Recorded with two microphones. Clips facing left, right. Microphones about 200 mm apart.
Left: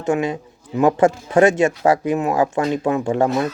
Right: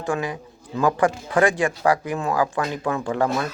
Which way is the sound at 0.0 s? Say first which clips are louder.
Left 6 dB; 25° left (ahead or behind).